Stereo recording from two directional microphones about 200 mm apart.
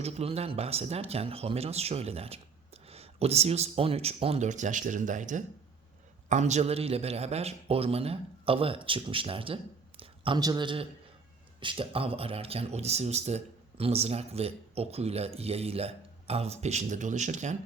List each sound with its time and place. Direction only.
0.0 s a man's voice: 30° right (ahead or behind)